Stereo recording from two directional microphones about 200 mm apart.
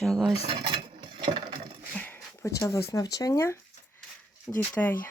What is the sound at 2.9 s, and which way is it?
Speech, 20° left (ahead or behind).